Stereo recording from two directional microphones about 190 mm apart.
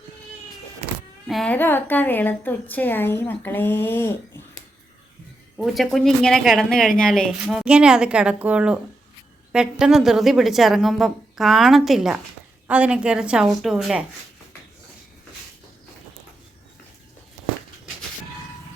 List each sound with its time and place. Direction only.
0.8 s a sound: 35° right (ahead or behind)
1.3 s a woman's voice: 5° left (ahead or behind)
5.5 s speech: centre (ahead or behind)